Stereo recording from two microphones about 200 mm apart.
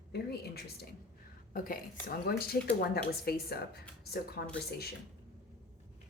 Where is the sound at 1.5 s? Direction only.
45° left (ahead or behind).